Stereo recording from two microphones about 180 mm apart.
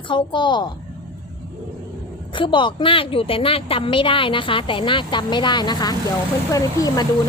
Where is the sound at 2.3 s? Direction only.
25° left (ahead or behind).